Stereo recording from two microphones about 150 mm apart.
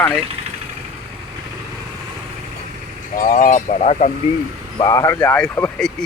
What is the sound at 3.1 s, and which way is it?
Speech, 60° left (ahead or behind).